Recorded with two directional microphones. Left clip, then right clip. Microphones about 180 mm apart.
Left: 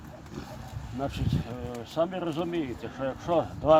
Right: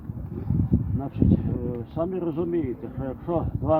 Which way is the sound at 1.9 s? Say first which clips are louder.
Even; 25° left (ahead or behind).